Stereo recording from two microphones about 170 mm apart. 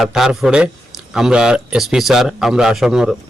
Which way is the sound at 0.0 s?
Centre (ahead or behind).